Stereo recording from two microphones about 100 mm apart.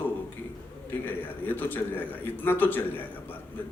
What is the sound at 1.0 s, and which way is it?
A man's voice, 20° left (ahead or behind).